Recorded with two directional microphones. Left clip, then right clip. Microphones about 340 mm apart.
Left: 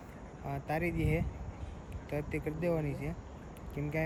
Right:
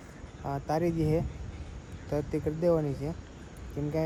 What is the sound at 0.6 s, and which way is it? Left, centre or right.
Speech, centre.